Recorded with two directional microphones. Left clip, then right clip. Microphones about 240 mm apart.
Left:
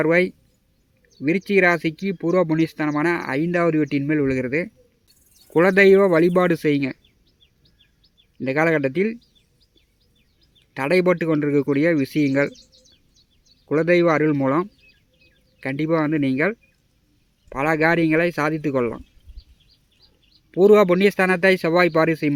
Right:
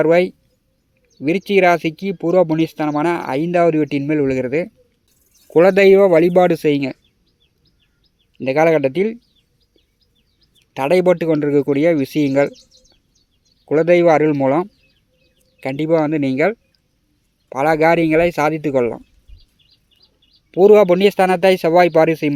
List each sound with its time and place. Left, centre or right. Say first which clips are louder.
0.0 s speech: right 5 dB; centre
8.4 s speech: right 6 dB; centre
10.8 s speech: right 5 dB; centre
13.7 s speech: right 5 dB; centre
20.5 s speech: right 4 dB; centre